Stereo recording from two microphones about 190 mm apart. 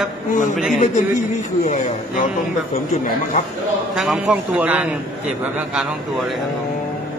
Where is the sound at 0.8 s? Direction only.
40° left (ahead or behind).